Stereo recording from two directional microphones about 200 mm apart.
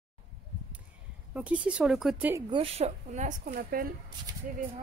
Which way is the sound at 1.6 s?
5° right (ahead or behind).